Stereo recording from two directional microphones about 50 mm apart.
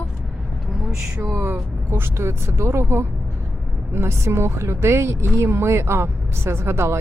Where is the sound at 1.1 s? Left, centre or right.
Right.